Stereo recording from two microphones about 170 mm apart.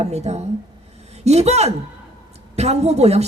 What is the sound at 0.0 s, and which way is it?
A man's voice, 40° right (ahead or behind).